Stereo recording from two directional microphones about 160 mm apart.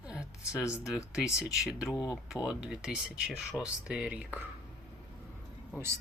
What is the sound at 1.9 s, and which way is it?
Speech, 25° left (ahead or behind).